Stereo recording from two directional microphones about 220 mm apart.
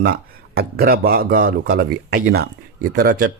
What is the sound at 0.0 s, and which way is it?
Speech, 40° right (ahead or behind).